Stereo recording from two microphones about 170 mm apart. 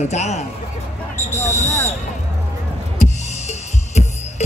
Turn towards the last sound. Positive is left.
turn(degrees=40)  # may be behind; listen again after turning